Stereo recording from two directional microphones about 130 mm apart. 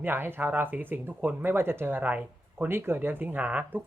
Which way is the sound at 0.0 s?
15° right (ahead or behind).